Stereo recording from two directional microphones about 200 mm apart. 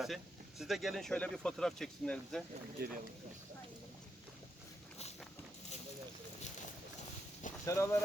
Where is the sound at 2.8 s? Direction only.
50° right (ahead or behind).